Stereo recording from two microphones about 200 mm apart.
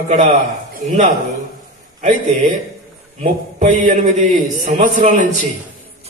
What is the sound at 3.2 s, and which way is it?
A man's voice, 35° right (ahead or behind).